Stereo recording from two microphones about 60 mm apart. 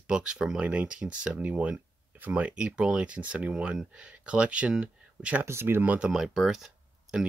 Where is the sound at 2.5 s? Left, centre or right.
Centre.